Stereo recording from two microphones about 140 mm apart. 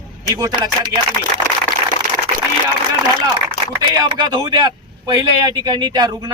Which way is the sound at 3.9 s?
30° right (ahead or behind).